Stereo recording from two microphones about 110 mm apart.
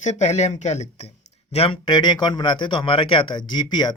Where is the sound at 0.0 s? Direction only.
90° left.